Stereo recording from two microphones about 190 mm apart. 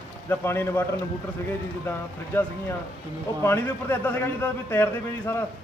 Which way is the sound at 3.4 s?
10° left (ahead or behind).